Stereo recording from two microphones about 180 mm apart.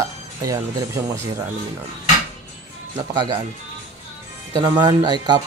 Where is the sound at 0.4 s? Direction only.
15° right (ahead or behind).